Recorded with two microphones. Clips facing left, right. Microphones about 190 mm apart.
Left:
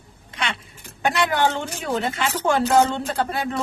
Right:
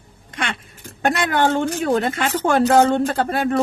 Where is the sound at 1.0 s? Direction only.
50° right (ahead or behind).